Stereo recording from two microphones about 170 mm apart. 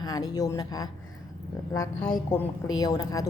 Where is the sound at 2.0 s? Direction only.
10° left (ahead or behind).